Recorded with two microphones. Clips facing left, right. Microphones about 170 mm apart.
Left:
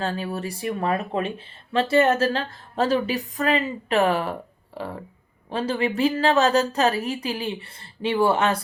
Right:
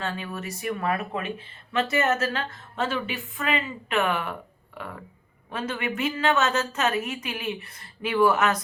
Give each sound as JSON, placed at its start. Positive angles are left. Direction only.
{"t": 0.0, "sound": "a woman's voice", "side_deg": 35}